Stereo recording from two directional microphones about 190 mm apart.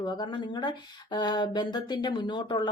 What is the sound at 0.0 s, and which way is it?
Speech, 25° left (ahead or behind).